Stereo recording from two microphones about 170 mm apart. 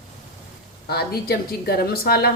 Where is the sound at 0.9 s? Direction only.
65° left (ahead or behind).